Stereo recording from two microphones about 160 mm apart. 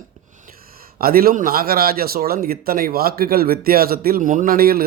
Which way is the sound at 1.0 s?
65° right (ahead or behind).